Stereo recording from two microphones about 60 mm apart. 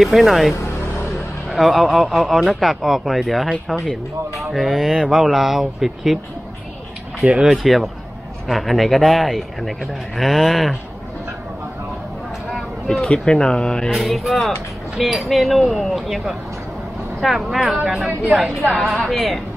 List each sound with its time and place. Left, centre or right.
0.0 s speech: centre
7.2 s speech: centre
7.5 s speech: centre
12.5 s speech: centre
13.9 s speech: centre